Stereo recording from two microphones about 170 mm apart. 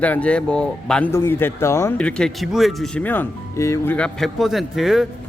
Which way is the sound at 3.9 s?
5° left (ahead or behind).